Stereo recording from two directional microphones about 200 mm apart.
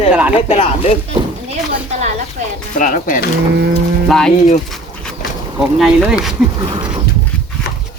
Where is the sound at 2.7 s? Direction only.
40° left (ahead or behind).